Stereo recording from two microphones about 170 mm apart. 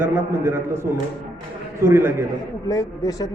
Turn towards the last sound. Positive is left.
turn(degrees=20)  # may be behind; listen again after turning